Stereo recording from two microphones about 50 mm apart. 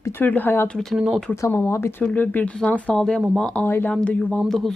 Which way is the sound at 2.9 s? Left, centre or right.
Centre.